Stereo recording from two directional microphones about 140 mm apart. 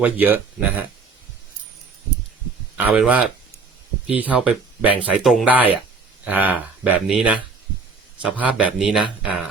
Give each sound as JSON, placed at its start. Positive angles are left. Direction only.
{"t": 0.0, "sound": "speech", "side_deg": -15}
{"t": 2.7, "sound": "speech", "side_deg": -10}
{"t": 9.2, "sound": "a sound", "side_deg": -5}